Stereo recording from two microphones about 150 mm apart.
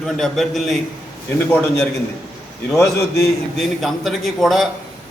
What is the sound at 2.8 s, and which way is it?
Speech, 20° left (ahead or behind).